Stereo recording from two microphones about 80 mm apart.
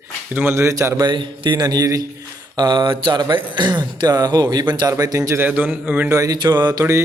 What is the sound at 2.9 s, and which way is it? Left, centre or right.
A man's voice, right.